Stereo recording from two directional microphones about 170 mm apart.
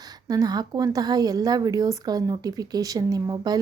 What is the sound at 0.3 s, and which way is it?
A woman's voice, 20° right (ahead or behind).